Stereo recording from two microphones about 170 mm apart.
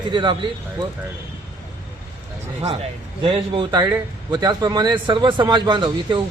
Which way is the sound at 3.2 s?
30° right (ahead or behind).